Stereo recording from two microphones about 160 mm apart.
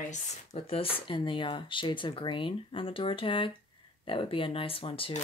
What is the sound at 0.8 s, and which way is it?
Speech, 35° left (ahead or behind).